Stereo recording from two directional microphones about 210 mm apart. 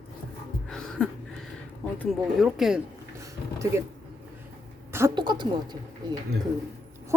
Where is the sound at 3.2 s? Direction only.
15° right (ahead or behind).